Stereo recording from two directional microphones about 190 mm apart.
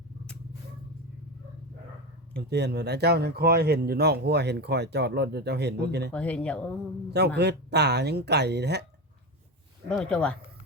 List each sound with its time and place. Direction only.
2.3 s speech: 60° right (ahead or behind)
6.1 s speech: 5° left (ahead or behind)
7.1 s speech: 60° right (ahead or behind)
9.9 s speech: 5° left (ahead or behind)